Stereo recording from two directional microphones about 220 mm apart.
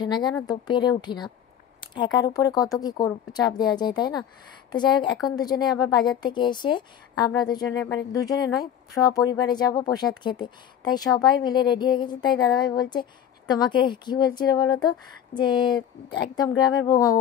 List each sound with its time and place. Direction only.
0.0 s a woman's voice: 20° left (ahead or behind)